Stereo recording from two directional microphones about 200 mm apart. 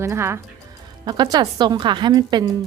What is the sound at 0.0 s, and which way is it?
Speech, 15° right (ahead or behind).